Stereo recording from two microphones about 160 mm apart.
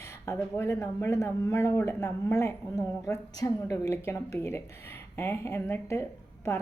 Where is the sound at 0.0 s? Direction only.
15° left (ahead or behind).